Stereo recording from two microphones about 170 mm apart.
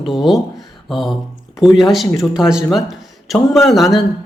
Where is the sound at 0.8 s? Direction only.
Centre (ahead or behind).